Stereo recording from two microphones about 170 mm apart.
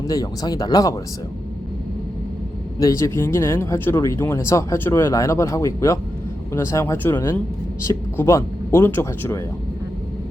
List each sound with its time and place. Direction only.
0.1 s speech: 20° left (ahead or behind)
2.7 s speech: 20° left (ahead or behind)